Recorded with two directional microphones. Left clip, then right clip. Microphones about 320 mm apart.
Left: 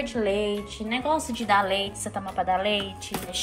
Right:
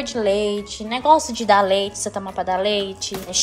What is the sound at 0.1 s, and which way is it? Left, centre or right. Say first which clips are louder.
Speech: right 8 dB; centre.